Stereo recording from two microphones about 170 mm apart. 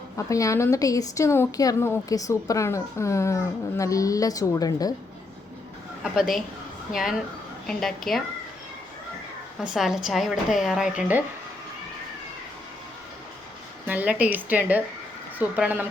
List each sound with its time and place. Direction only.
0.2 s a woman's voice: 20° left (ahead or behind)
6.0 s a woman's voice: centre (ahead or behind)
9.6 s a woman's voice: 5° right (ahead or behind)
13.8 s a woman's voice: 10° right (ahead or behind)